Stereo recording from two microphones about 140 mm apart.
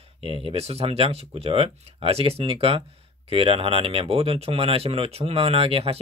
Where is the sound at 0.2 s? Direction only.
40° right (ahead or behind).